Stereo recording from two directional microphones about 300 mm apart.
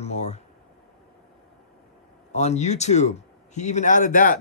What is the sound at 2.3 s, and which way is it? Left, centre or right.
Speech, left.